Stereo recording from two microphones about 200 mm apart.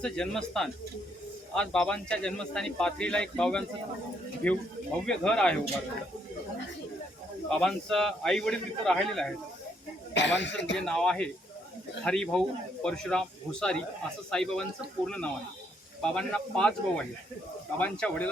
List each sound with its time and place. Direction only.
0.0 s a man's voice: 5° left (ahead or behind)
7.5 s a man's voice: 5° left (ahead or behind)
10.2 s speech: 60° left (ahead or behind)
10.8 s a man's voice: 5° left (ahead or behind)